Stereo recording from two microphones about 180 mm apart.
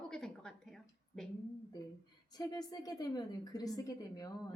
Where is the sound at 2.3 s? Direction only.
20° left (ahead or behind).